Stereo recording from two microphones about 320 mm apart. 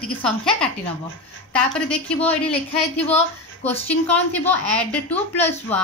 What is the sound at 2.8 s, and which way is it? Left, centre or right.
Speech, centre.